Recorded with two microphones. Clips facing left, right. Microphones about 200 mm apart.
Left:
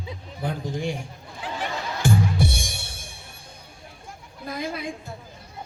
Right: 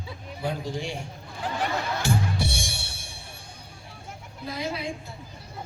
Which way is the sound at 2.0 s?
50° left (ahead or behind).